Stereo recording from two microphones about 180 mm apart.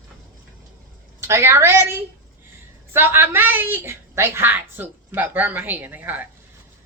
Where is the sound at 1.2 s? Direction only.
15° right (ahead or behind).